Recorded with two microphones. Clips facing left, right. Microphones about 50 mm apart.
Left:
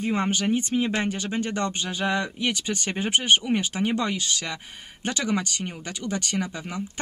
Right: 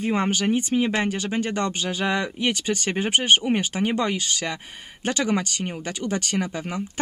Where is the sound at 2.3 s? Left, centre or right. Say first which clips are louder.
Right 3 dB; right.